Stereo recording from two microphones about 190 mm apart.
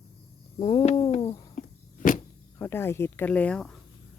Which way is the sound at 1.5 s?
45° left (ahead or behind).